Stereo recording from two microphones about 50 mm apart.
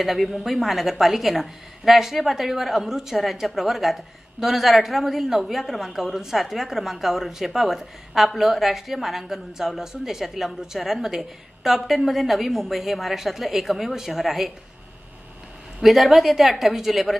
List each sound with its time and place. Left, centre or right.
0.0 s a woman's voice: centre
15.8 s a woman's voice: centre